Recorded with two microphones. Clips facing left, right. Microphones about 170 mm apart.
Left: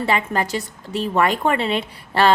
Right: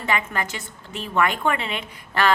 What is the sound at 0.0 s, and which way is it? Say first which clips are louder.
A woman's voice: left 5 dB; 35° left (ahead or behind).